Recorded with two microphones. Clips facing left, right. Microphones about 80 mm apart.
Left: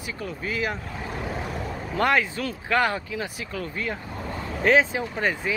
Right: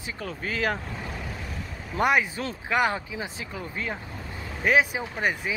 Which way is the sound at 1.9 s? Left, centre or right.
Centre.